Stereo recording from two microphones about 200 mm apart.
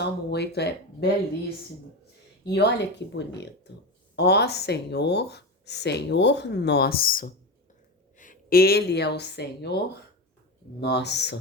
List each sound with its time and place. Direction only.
0.0 s speech: 55° left (ahead or behind)
2.4 s speech: 55° left (ahead or behind)